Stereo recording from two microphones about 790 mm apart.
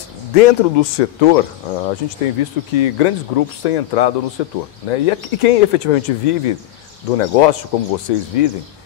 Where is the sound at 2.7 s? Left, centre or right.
Left.